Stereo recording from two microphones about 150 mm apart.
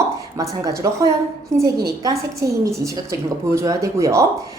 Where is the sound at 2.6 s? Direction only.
20° right (ahead or behind).